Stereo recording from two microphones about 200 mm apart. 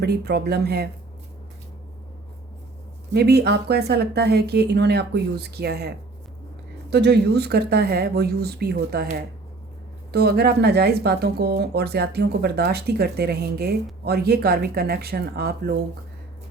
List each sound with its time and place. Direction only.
0.0 s speech: 55° right (ahead or behind)
3.1 s speech: 55° right (ahead or behind)
6.9 s speech: 55° right (ahead or behind)
10.1 s speech: 55° right (ahead or behind)